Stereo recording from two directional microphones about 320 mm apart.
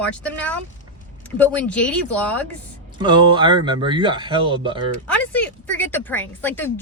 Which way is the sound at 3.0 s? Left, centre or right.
Centre.